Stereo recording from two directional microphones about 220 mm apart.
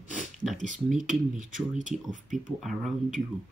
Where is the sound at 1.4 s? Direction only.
35° right (ahead or behind).